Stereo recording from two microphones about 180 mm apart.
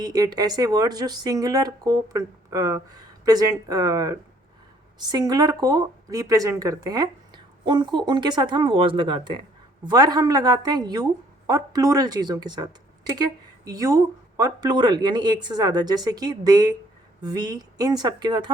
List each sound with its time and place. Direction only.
0.0 s speech: 20° right (ahead or behind)